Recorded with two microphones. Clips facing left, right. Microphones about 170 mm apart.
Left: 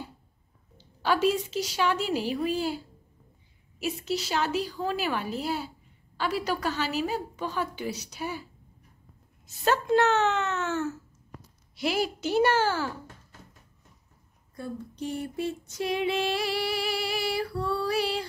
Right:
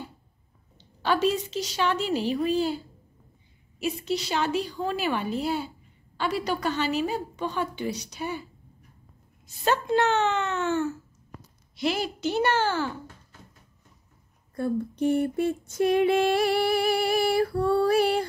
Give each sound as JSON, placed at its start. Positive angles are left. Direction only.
{"t": 0.7, "sound": "a woman's voice", "side_deg": 5}
{"t": 3.8, "sound": "a woman's voice", "side_deg": 5}
{"t": 9.7, "sound": "a woman's voice", "side_deg": 0}
{"t": 14.5, "sound": "female singing", "side_deg": -55}